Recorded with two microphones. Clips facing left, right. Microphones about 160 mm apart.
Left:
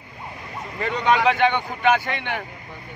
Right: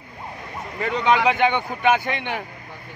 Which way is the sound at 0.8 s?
15° right (ahead or behind).